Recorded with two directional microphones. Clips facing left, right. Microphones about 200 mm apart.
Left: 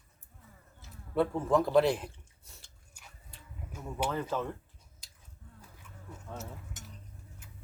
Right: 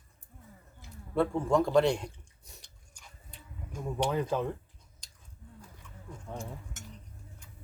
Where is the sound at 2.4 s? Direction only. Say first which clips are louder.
Right 4 dB; 15° right (ahead or behind).